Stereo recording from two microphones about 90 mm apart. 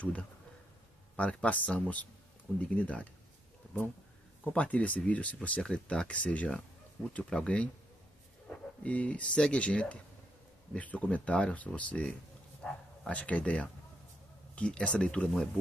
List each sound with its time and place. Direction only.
1.1 s speech: 15° left (ahead or behind)
4.5 s speech: 15° left (ahead or behind)